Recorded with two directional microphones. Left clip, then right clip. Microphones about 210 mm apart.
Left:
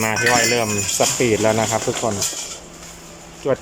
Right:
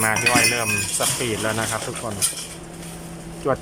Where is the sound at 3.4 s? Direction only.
5° left (ahead or behind).